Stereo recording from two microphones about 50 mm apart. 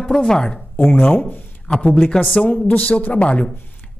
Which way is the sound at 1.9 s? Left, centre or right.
Centre.